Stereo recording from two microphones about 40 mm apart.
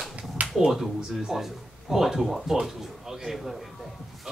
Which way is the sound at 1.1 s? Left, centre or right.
Centre.